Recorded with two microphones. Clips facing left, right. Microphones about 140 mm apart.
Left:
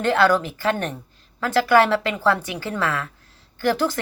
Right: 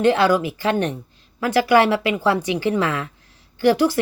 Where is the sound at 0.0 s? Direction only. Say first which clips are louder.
Right 2 dB; 15° right (ahead or behind).